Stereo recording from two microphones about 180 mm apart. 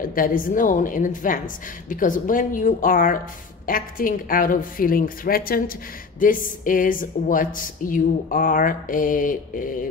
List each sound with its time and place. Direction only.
0.0 s speech: 50° left (ahead or behind)